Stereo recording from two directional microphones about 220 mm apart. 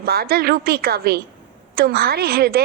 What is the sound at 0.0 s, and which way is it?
A woman's voice, 45° right (ahead or behind).